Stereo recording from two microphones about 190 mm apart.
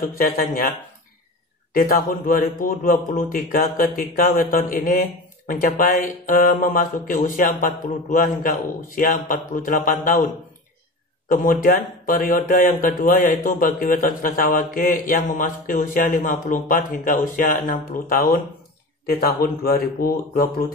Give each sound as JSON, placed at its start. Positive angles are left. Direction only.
{"t": 0.0, "sound": "speech", "side_deg": 50}
{"t": 1.7, "sound": "speech", "side_deg": 50}